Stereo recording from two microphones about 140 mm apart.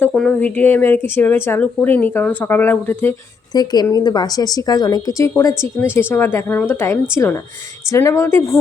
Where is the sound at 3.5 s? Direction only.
30° left (ahead or behind).